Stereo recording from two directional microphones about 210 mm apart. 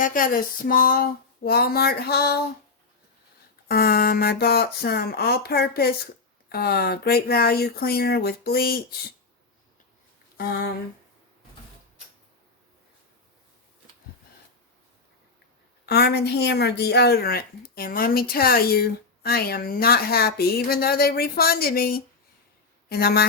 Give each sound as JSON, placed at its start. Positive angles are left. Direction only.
{"t": 0.0, "sound": "a sound", "side_deg": 40}
{"t": 1.5, "sound": "a woman's voice", "side_deg": 45}
{"t": 3.7, "sound": "a woman's voice", "side_deg": 45}
{"t": 10.3, "sound": "speech", "side_deg": 50}
{"t": 15.9, "sound": "a woman's voice", "side_deg": 50}